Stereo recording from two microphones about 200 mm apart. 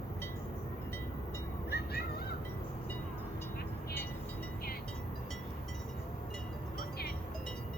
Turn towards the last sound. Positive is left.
turn(degrees=50)  # may be behind; listen again after turning